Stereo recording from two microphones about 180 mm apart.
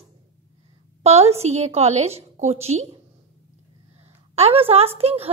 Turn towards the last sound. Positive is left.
turn(degrees=-35)  # may be behind; listen again after turning